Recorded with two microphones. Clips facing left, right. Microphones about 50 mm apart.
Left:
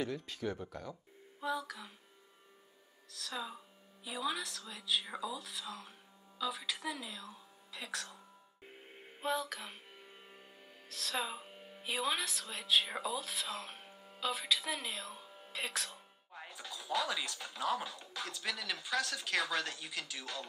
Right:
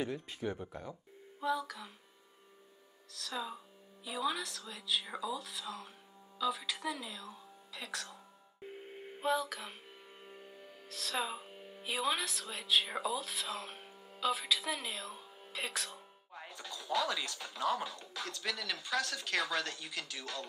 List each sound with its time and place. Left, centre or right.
0.0 s speech: centre
1.4 s a sound: centre
3.1 s speech: centre
8.6 s music: centre
10.2 s speech: centre